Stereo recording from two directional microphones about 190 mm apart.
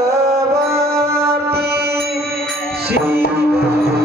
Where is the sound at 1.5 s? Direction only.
55° right (ahead or behind).